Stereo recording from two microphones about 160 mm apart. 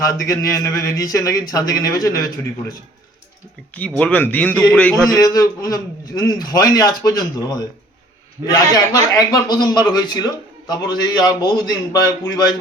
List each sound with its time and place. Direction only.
0.0 s speech: 20° left (ahead or behind)
3.8 s speech: 5° left (ahead or behind)
5.1 s speech: 25° left (ahead or behind)
8.4 s a man's voice: 20° right (ahead or behind)
8.7 s speech: 25° left (ahead or behind)